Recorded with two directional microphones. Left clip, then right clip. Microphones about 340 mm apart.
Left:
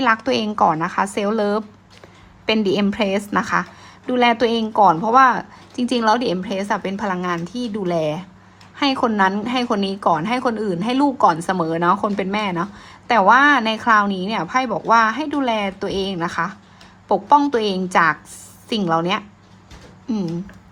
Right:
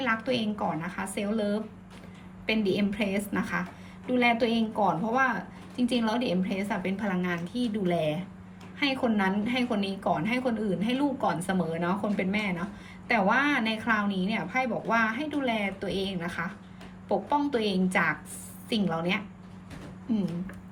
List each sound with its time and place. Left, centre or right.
0.0 s a woman's voice: centre